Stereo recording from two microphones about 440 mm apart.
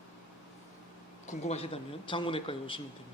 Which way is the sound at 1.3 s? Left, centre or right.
Centre.